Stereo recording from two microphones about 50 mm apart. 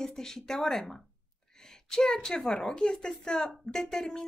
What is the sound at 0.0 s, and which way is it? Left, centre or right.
A woman's voice, centre.